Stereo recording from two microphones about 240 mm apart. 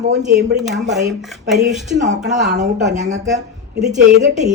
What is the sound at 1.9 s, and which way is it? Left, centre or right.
Speech, right.